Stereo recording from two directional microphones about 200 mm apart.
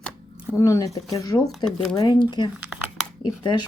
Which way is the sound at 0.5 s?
15° left (ahead or behind).